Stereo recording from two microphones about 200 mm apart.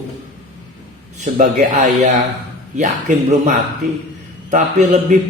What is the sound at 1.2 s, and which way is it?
Speech, 40° right (ahead or behind).